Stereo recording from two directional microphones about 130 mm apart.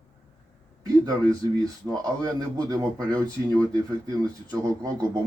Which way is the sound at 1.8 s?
30° right (ahead or behind).